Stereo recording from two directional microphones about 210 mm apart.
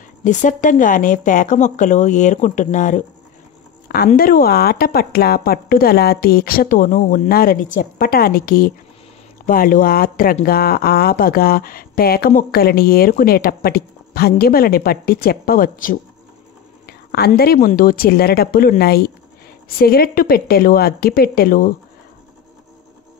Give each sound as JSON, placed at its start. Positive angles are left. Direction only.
{"t": 0.2, "sound": "speech", "side_deg": 35}
{"t": 4.1, "sound": "speech", "side_deg": 45}